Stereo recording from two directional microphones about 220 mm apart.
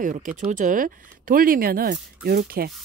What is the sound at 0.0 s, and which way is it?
A woman's voice, 35° right (ahead or behind).